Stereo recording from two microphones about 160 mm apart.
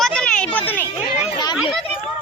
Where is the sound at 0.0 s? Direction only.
5° left (ahead or behind).